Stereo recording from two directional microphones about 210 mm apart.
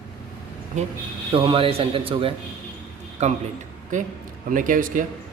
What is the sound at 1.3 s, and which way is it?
A man's voice, 25° right (ahead or behind).